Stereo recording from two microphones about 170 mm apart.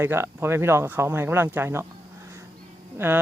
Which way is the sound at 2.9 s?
15° right (ahead or behind).